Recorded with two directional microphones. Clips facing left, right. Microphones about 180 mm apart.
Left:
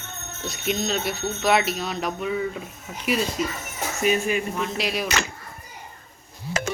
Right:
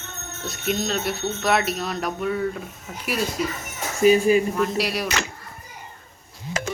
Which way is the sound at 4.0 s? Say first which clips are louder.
Right 7 dB; 35° right (ahead or behind).